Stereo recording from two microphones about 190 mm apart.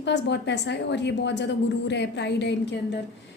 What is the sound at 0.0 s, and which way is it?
A woman's voice, 65° left (ahead or behind).